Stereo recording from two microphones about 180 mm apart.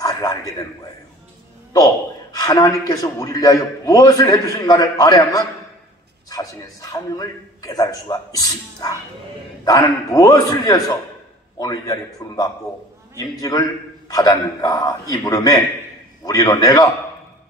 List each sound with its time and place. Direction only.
0.0 s a man's voice: 20° left (ahead or behind)
2.3 s a man's voice: 20° left (ahead or behind)